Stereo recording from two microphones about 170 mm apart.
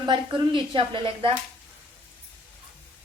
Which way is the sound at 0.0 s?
25° right (ahead or behind).